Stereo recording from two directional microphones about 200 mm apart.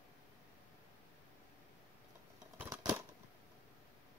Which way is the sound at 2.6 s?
20° right (ahead or behind).